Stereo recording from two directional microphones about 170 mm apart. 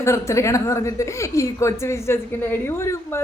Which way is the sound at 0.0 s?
15° left (ahead or behind).